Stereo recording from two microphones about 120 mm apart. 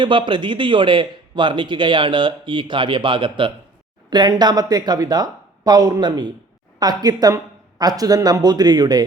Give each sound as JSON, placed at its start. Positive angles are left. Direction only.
{"t": 0.0, "sound": "a man's voice", "side_deg": -45}